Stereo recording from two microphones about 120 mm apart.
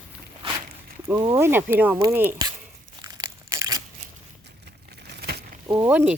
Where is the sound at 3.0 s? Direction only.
35° right (ahead or behind).